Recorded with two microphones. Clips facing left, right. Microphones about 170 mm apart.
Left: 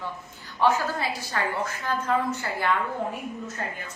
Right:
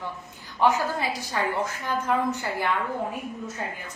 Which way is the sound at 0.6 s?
15° right (ahead or behind).